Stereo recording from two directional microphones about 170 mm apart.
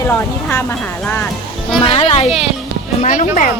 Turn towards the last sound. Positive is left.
turn(degrees=45)  # may be behind; listen again after turning